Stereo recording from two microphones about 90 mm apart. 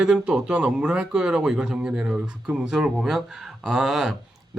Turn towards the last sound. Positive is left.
turn(degrees=-5)  # may be behind; listen again after turning